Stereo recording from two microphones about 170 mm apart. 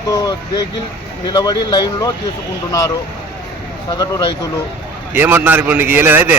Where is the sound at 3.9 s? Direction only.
20° left (ahead or behind).